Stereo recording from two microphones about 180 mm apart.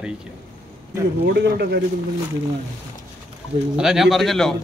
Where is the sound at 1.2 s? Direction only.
70° right (ahead or behind).